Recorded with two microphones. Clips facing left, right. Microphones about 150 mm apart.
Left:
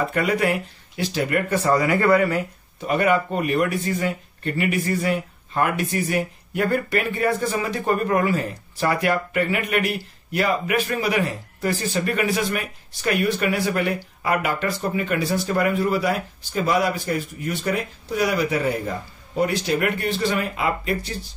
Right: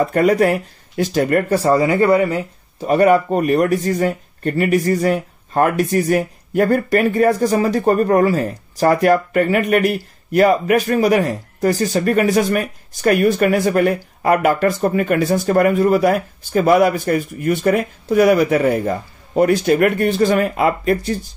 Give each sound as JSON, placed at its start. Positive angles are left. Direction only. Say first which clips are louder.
{"t": 0.1, "sound": "speech", "louder": "right 7 dB", "side_deg": -40}
{"t": 2.8, "sound": "speech", "louder": "right 7 dB", "side_deg": -35}